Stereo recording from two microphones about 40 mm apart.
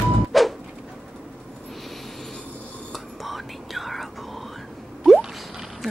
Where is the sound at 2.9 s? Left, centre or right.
Centre.